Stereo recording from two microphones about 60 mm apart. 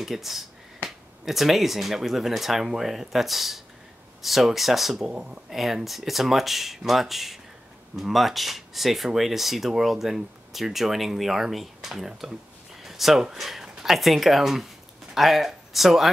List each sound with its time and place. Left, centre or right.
0.0 s speech: centre
5.1 s speech: right
5.5 s speech: centre